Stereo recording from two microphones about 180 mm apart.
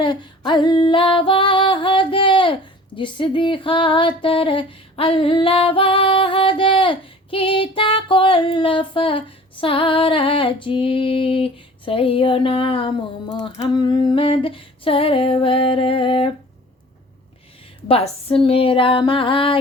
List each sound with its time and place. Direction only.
0.0 s female singing: 25° left (ahead or behind)
17.8 s female singing: 35° left (ahead or behind)